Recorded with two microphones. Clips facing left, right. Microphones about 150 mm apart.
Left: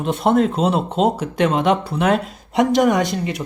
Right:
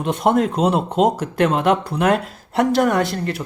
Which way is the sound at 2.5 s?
10° left (ahead or behind).